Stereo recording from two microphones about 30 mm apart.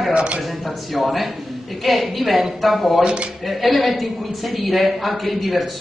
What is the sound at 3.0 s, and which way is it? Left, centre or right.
Speech, right.